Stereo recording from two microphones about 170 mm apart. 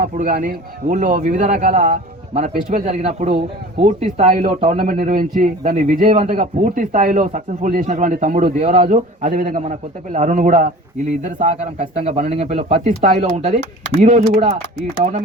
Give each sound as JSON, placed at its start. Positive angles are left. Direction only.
{"t": 0.0, "sound": "a man's voice", "side_deg": -55}
{"t": 1.9, "sound": "speech", "side_deg": -40}
{"t": 4.9, "sound": "a man's voice", "side_deg": -55}